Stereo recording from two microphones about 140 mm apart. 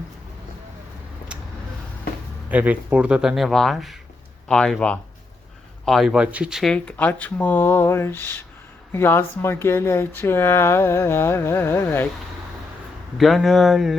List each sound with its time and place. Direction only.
2.5 s speech: 10° right (ahead or behind)
6.7 s speech: 10° left (ahead or behind)
13.1 s speech: centre (ahead or behind)